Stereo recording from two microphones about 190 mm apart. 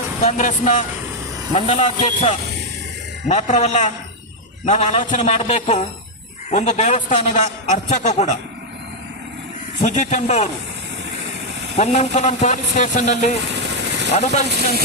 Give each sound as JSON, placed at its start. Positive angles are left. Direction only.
{"t": 0.2, "sound": "a man's voice", "side_deg": 35}
{"t": 9.8, "sound": "a man's voice", "side_deg": 40}
{"t": 11.8, "sound": "a man's voice", "side_deg": 35}